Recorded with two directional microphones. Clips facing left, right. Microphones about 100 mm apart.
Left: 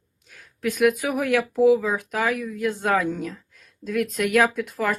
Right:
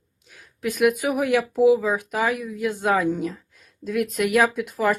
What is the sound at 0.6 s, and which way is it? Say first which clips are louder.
Speech: even; centre (ahead or behind).